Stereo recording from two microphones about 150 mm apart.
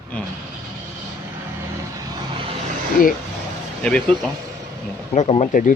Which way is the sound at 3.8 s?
5° left (ahead or behind).